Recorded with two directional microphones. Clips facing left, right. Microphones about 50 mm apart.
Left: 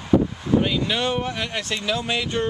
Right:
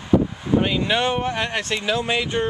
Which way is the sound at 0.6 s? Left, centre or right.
Centre.